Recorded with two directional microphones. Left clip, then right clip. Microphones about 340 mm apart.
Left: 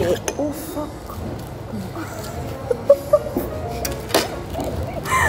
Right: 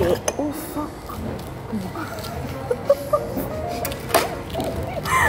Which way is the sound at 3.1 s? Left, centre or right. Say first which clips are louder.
Left 5 dB; centre.